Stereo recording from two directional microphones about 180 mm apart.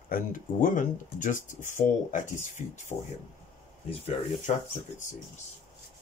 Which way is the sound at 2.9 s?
20° left (ahead or behind).